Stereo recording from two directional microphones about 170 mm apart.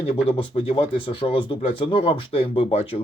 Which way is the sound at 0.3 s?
30° left (ahead or behind).